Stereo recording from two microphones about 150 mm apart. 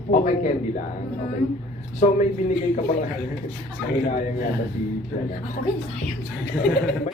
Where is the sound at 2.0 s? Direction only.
50° left (ahead or behind).